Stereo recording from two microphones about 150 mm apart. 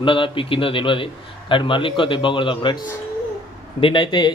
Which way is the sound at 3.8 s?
35° left (ahead or behind).